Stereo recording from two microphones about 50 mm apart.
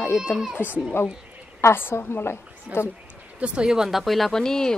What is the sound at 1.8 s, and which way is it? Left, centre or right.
A woman's voice, left.